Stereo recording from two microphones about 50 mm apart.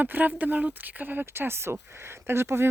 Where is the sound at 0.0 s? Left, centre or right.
Right.